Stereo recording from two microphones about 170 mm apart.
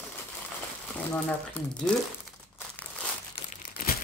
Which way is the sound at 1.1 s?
5° left (ahead or behind).